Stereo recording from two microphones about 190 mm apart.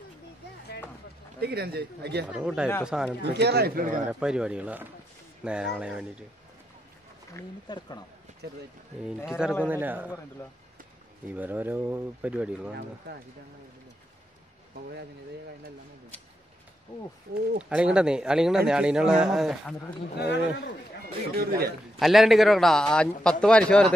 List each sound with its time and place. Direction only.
1.4 s speech: 55° right (ahead or behind)
2.2 s a man's voice: 5° right (ahead or behind)
3.2 s speech: 60° right (ahead or behind)
4.1 s a man's voice: 5° right (ahead or behind)
7.3 s speech: 20° left (ahead or behind)
9.0 s a man's voice: centre (ahead or behind)
11.3 s speech: 10° right (ahead or behind)
13.1 s speech: 55° right (ahead or behind)
17.6 s a man's voice: 5° right (ahead or behind)
20.2 s a man's voice: 65° left (ahead or behind)
21.4 s a man's voice: 55° right (ahead or behind)
21.9 s a man's voice: centre (ahead or behind)